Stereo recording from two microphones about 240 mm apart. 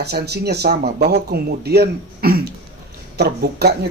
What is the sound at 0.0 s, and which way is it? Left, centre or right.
Speech, right.